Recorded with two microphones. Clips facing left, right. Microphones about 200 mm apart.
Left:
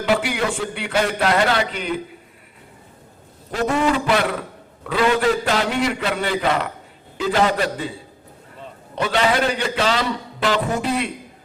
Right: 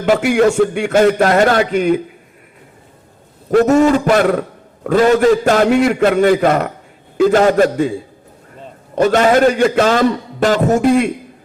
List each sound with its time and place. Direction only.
0.0 s a man's voice: 45° right (ahead or behind)
3.5 s a man's voice: 45° right (ahead or behind)
9.0 s a man's voice: 45° right (ahead or behind)